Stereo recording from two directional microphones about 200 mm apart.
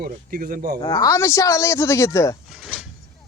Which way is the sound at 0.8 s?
20° left (ahead or behind).